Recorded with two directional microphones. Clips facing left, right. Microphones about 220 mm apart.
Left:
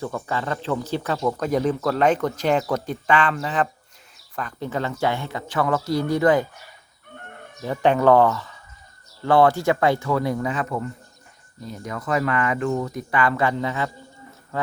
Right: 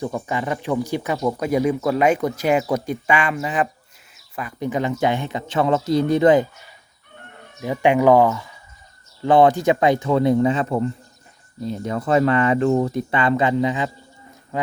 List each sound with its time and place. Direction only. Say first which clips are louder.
0.0 s speech: right 3 dB; 15° right (ahead or behind)
7.6 s speech: right 2 dB; 15° right (ahead or behind)